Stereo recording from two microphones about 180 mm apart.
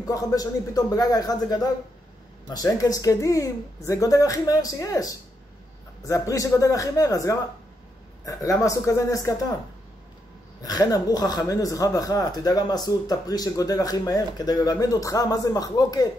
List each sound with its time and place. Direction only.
0.0 s a man's voice: 20° left (ahead or behind)
10.6 s speech: 20° left (ahead or behind)